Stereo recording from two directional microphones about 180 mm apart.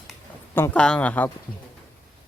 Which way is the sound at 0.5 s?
10° left (ahead or behind).